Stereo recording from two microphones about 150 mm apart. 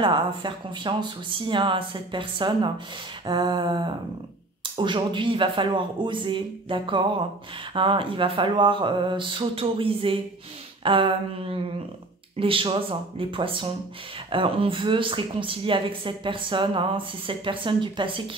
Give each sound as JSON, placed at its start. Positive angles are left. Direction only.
{"t": 0.0, "sound": "speech", "side_deg": -35}